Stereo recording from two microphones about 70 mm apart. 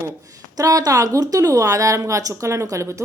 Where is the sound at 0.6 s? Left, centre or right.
Right.